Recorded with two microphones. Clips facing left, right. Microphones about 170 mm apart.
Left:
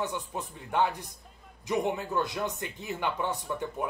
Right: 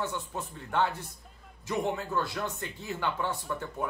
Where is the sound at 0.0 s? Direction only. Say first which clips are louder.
Left 1 dB; 15° left (ahead or behind).